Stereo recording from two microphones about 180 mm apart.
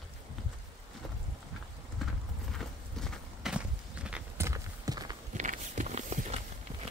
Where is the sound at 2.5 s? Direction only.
Centre (ahead or behind).